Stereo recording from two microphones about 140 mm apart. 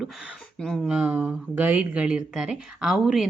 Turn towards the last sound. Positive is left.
turn(degrees=0)  # may be behind; listen again after turning